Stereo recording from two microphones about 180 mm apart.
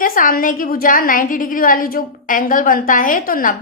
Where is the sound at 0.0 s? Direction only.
50° left (ahead or behind).